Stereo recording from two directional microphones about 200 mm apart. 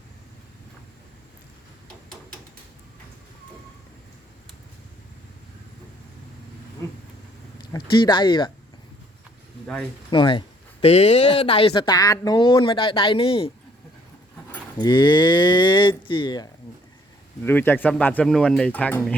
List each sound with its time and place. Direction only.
7.7 s speech: 25° left (ahead or behind)
10.1 s speech: 25° left (ahead or behind)
14.8 s speech: 20° left (ahead or behind)
17.4 s speech: 10° left (ahead or behind)